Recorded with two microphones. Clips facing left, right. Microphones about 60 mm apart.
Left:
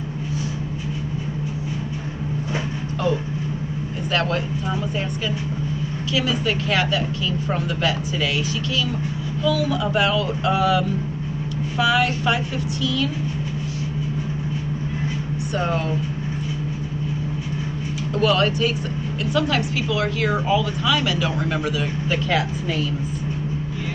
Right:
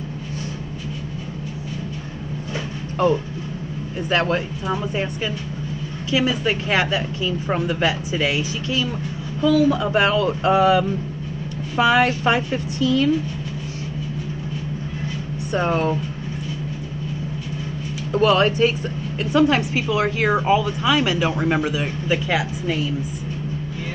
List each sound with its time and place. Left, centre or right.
4.1 s a woman's voice: right
6.1 s a woman's voice: right
9.4 s speech: right
15.5 s a woman's voice: right
18.1 s a woman's voice: right